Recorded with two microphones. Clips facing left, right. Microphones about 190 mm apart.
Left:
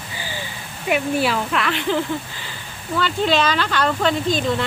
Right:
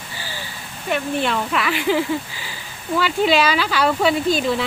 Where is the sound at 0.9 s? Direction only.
5° left (ahead or behind).